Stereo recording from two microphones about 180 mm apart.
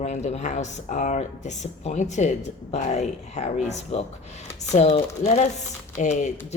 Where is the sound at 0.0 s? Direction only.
40° left (ahead or behind).